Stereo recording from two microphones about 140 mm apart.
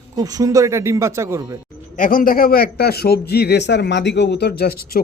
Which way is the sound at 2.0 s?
85° left.